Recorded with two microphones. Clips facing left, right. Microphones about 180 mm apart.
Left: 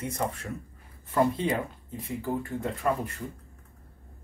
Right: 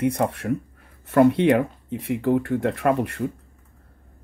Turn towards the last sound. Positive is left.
turn(degrees=-75)  # may be behind; listen again after turning